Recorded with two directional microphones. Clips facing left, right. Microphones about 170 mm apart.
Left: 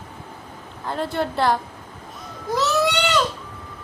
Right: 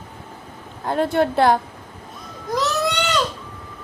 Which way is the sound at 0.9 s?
55° right (ahead or behind).